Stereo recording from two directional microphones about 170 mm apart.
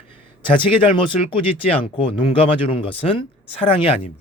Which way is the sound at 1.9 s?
35° left (ahead or behind).